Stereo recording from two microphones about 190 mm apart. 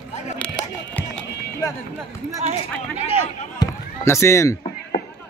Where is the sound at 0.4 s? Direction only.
5° left (ahead or behind).